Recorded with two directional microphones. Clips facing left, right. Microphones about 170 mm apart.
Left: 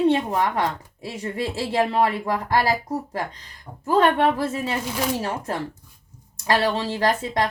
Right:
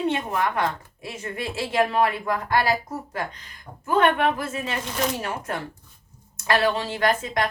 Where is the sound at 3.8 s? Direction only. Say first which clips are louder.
Left 2 dB; 35° left (ahead or behind).